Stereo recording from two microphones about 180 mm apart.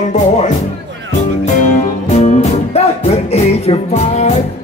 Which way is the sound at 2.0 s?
40° left (ahead or behind).